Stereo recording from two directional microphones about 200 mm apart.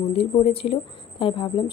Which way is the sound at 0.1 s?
30° left (ahead or behind).